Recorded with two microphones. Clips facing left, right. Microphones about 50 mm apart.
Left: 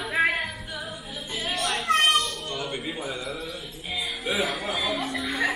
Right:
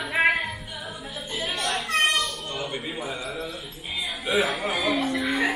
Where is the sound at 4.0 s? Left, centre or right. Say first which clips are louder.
Right 3 dB; centre.